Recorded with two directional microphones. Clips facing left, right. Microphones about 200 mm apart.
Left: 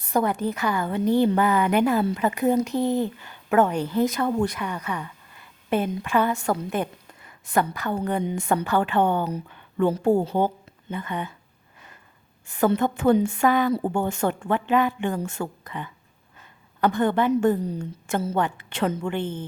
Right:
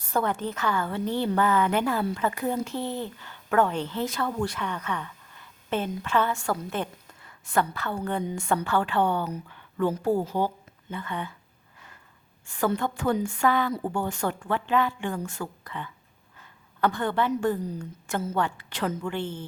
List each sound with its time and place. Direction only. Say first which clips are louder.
0.1 s a woman's voice: left 4 dB; 15° left (ahead or behind)
12.5 s a woman's voice: left 5 dB; 20° left (ahead or behind)